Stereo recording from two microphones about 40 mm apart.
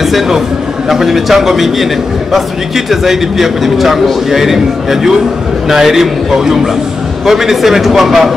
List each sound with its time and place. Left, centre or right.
0.8 s a man's voice: centre
2.9 s a man's voice: centre
5.7 s a man's voice: centre